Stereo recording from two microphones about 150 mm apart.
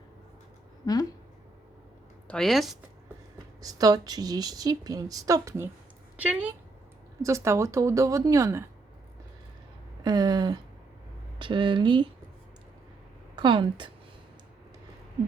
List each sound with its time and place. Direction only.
0.8 s speech: 20° left (ahead or behind)
2.2 s speech: 5° left (ahead or behind)
3.6 s a woman's voice: 25° right (ahead or behind)
6.1 s a woman's voice: 10° right (ahead or behind)
10.0 s a woman's voice: 25° right (ahead or behind)
13.3 s a woman's voice: 35° right (ahead or behind)